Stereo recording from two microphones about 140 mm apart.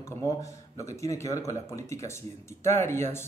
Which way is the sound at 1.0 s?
20° left (ahead or behind).